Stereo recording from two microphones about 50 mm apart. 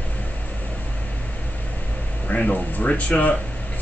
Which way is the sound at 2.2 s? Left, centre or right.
Left.